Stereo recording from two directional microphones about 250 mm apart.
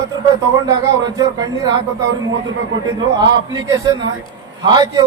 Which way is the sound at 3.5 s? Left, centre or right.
Centre.